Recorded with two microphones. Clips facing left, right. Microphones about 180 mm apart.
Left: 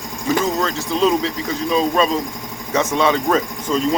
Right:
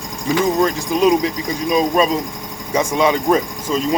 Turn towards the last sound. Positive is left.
turn(degrees=-15)  # may be behind; listen again after turning